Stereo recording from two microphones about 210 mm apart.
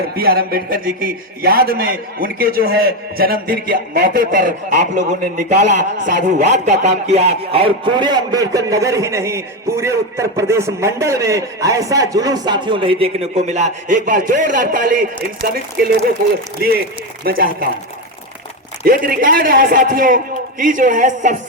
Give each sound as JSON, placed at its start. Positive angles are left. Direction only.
{"t": 0.2, "sound": "a man's voice", "side_deg": -45}
{"t": 17.2, "sound": "a man's voice", "side_deg": -45}
{"t": 18.9, "sound": "a man's voice", "side_deg": -45}